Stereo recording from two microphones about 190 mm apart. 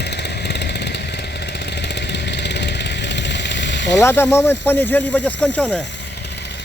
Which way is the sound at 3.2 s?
65° left (ahead or behind).